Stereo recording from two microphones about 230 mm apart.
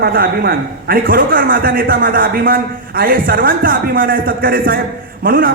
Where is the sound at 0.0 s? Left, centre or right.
Right.